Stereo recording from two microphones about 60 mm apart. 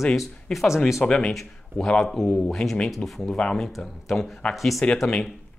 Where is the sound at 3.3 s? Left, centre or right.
Centre.